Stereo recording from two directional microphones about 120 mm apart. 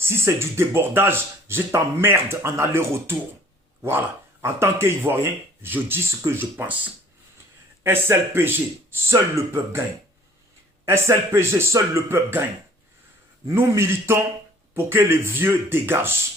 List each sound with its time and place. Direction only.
0.0 s speech: 20° right (ahead or behind)
10.8 s speech: 20° right (ahead or behind)
13.5 s speech: 20° right (ahead or behind)